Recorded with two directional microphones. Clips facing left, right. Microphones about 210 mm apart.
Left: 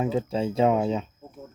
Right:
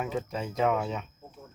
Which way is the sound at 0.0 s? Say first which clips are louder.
Left 7 dB; 30° left (ahead or behind).